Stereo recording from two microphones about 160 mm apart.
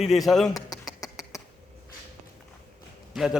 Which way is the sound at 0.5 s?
25° left (ahead or behind).